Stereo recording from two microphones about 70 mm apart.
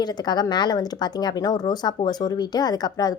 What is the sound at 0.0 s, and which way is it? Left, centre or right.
A woman's voice, left.